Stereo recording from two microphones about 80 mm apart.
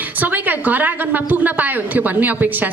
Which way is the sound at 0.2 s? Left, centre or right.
Right.